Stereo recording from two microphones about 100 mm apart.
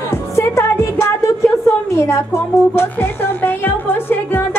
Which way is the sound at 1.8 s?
30° left (ahead or behind).